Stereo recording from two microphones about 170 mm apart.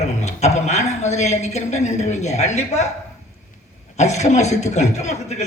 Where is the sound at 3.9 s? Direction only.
40° left (ahead or behind).